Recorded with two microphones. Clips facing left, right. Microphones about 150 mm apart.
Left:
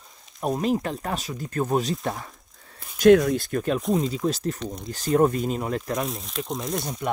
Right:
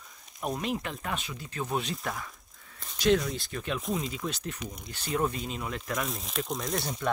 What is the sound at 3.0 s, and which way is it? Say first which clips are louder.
Speech: left 10 dB; 50° left (ahead or behind).